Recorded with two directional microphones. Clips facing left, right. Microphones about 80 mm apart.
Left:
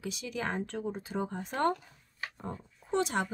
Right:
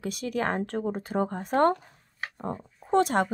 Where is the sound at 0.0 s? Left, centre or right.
Right.